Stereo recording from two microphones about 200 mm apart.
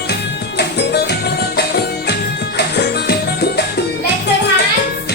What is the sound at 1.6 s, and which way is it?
Music, 55° left (ahead or behind).